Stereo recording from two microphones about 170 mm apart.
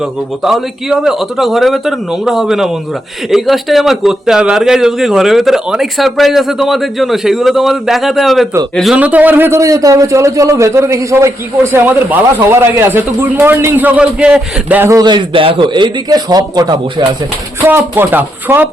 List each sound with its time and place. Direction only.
0.4 s a man's voice: centre (ahead or behind); by 17.1 s 25° right (ahead or behind)
17.7 s a man's voice: 10° right (ahead or behind)